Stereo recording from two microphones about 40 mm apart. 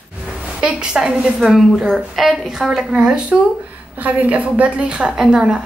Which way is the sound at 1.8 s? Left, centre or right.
Centre.